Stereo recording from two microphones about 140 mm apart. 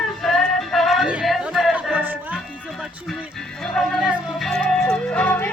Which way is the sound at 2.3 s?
Centre (ahead or behind).